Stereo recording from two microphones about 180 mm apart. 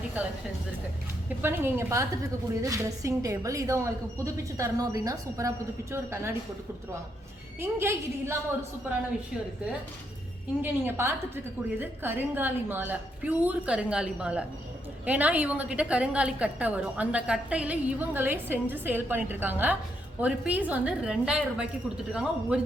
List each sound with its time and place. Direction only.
1.4 s a woman's voice: 15° right (ahead or behind)
7.6 s a woman's voice: 15° right (ahead or behind)
10.6 s a woman's voice: 10° right (ahead or behind)